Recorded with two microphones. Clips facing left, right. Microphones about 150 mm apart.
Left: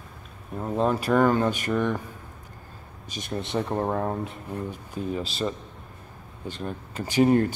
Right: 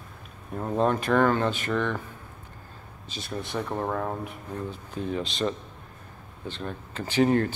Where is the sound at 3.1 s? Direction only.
20° left (ahead or behind).